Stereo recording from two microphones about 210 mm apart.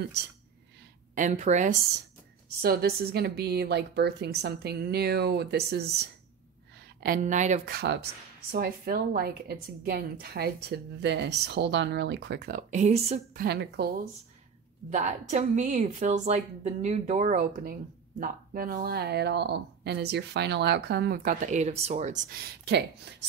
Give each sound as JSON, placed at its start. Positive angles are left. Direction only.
{"t": 1.1, "sound": "a woman's voice", "side_deg": -35}
{"t": 2.6, "sound": "a woman's voice", "side_deg": -45}
{"t": 7.0, "sound": "a woman's voice", "side_deg": -40}
{"t": 7.7, "sound": "a woman's voice", "side_deg": -50}
{"t": 13.4, "sound": "a woman's voice", "side_deg": -50}
{"t": 14.9, "sound": "a woman's voice", "side_deg": -35}